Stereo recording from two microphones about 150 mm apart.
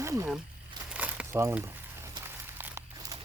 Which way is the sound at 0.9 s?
10° right (ahead or behind).